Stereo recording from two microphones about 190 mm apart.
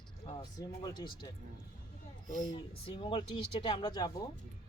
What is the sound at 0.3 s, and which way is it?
Speech, 20° left (ahead or behind).